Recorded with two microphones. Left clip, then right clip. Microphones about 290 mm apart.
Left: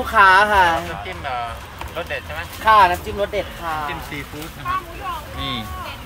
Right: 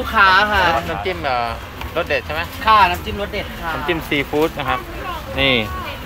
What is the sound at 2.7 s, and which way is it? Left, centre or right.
Speech, left.